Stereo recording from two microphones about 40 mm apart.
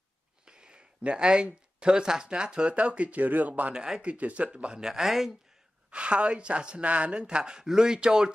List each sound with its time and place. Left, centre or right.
0.5 s speech: right
3.1 s speech: right
3.7 s speech: centre
4.0 s a woman's voice: right
4.8 s speech: centre
5.9 s a woman's voice: right
7.2 s speech: right